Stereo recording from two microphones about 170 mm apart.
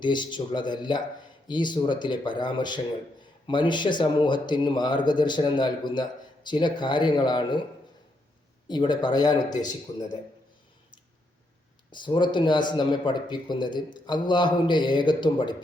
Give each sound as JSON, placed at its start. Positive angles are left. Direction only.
{"t": 0.0, "sound": "speech", "side_deg": 25}
{"t": 8.6, "sound": "speech", "side_deg": 25}
{"t": 11.9, "sound": "speech", "side_deg": 25}